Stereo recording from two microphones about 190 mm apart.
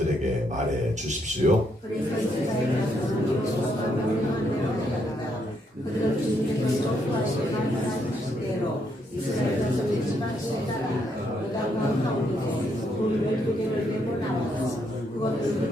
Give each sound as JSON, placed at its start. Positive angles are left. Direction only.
{"t": 1.4, "sound": "a man's voice", "side_deg": -40}